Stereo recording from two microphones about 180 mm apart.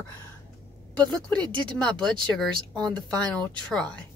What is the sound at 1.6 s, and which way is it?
A woman's voice, 5° left (ahead or behind).